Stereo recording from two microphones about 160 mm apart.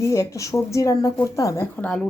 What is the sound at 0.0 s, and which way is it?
Speech, 20° left (ahead or behind).